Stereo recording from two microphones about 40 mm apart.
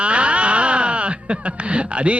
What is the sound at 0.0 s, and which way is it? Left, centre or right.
Speech, right.